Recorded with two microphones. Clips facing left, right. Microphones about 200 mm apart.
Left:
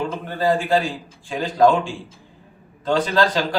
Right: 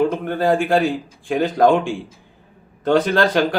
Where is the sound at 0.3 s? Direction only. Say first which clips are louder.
Right 2 dB; 55° right (ahead or behind).